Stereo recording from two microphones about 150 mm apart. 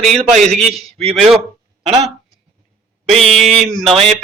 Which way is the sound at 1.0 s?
45° right (ahead or behind).